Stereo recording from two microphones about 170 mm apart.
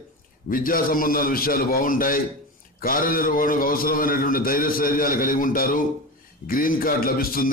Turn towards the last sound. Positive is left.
turn(degrees=60)  # may be behind; listen again after turning